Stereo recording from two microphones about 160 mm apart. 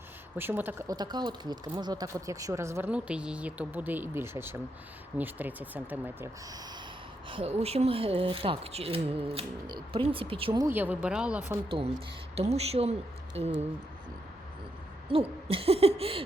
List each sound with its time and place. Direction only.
0.3 s speech: 15° right (ahead or behind)
0.9 s speech: 25° right (ahead or behind)
7.3 s speech: 35° right (ahead or behind)
10.6 s speech: 10° right (ahead or behind)
12.3 s speech: 40° right (ahead or behind)
15.1 s speech: 35° right (ahead or behind)